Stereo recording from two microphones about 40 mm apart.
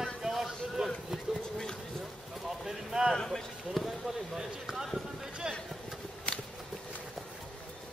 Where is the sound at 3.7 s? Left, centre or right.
Centre.